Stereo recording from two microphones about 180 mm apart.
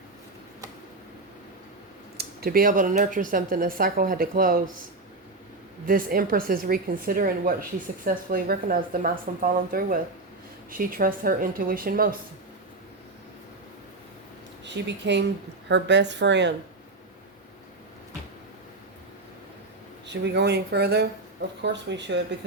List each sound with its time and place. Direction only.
2.1 s speech: 55° right (ahead or behind)
5.8 s speech: 50° right (ahead or behind)
14.6 s speech: 75° right (ahead or behind)
20.1 s speech: 75° right (ahead or behind)
21.6 s speech: 80° right